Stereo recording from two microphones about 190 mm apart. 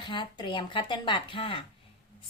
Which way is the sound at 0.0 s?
25° left (ahead or behind).